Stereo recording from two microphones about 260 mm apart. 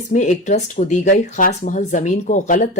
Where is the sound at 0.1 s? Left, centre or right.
Left.